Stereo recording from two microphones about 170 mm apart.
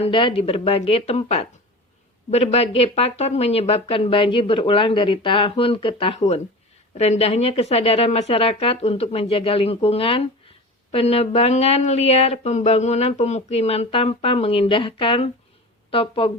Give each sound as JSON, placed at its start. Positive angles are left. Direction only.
{"t": 0.0, "sound": "speech", "side_deg": 30}